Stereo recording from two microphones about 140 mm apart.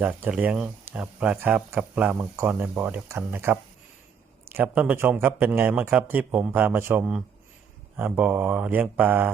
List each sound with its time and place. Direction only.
0.0 s speech: 10° right (ahead or behind)